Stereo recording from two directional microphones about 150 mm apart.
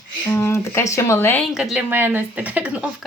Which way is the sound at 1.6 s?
10° right (ahead or behind).